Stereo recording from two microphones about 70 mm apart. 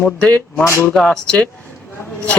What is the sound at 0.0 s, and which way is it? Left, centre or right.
Speech, centre.